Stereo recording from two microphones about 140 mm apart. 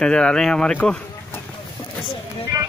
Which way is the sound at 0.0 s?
5° left (ahead or behind).